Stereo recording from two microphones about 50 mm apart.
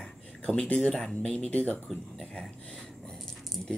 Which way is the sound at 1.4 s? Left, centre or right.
Left.